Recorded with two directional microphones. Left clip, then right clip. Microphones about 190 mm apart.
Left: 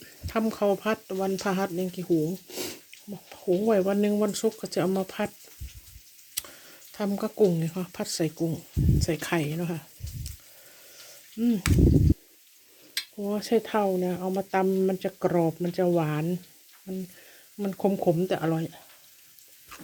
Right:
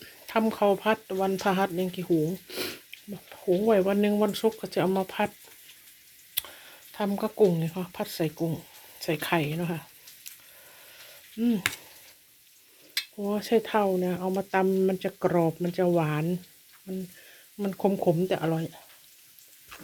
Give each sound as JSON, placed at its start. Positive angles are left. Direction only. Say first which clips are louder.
{"t": 0.0, "sound": "speech", "louder": "right 2 dB", "side_deg": 5}
{"t": 6.3, "sound": "a sound", "louder": "right 3 dB", "side_deg": 10}
{"t": 7.3, "sound": "speech", "louder": "even", "side_deg": 15}
{"t": 11.3, "sound": "speech", "louder": "left 1 dB", "side_deg": 10}
{"t": 13.1, "sound": "speech", "louder": "even", "side_deg": 10}
{"t": 19.7, "sound": "a sound", "louder": "left 1 dB", "side_deg": 20}